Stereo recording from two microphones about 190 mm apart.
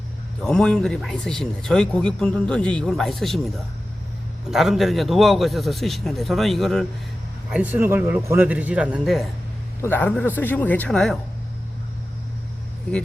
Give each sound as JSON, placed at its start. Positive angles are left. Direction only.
{"t": 0.4, "sound": "speech", "side_deg": 5}
{"t": 7.5, "sound": "a man's voice", "side_deg": -10}
{"t": 9.8, "sound": "speech", "side_deg": 10}